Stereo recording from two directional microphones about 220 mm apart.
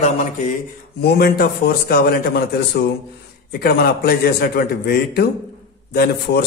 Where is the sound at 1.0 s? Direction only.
45° left (ahead or behind).